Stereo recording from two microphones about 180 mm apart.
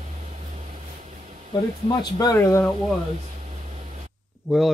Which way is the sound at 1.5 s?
25° left (ahead or behind).